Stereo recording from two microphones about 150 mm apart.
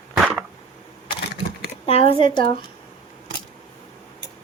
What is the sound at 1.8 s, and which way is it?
Speech, 40° left (ahead or behind).